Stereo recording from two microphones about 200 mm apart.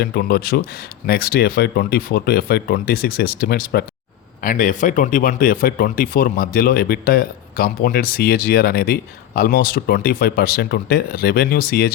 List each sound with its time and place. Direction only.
0.0 s speech: 50° left (ahead or behind)